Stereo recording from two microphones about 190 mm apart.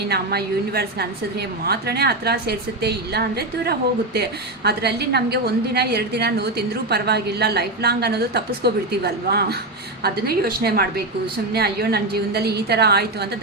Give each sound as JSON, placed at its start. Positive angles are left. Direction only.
{"t": 0.1, "sound": "a woman's voice", "side_deg": -55}